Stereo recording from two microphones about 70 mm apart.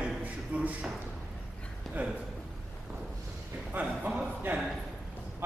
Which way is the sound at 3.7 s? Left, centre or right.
Right.